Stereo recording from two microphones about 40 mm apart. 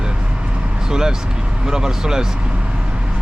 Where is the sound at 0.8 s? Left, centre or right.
Centre.